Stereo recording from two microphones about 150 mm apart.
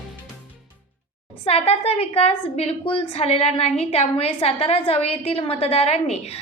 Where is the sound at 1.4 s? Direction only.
40° left (ahead or behind).